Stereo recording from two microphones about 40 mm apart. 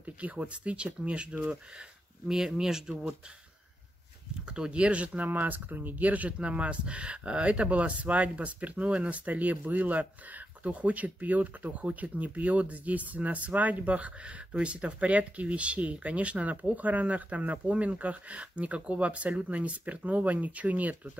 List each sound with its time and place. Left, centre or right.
0.0 s speech: right
2.2 s speech: centre
4.5 s speech: right